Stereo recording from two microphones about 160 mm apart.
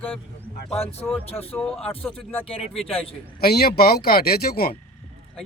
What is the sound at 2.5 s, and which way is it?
Speech, 35° left (ahead or behind).